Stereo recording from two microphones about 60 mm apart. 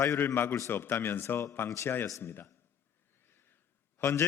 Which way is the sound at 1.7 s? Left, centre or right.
Left.